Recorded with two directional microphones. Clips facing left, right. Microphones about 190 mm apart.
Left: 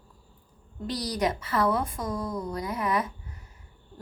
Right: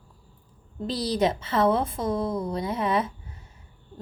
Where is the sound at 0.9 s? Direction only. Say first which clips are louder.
Right 4 dB; 25° right (ahead or behind).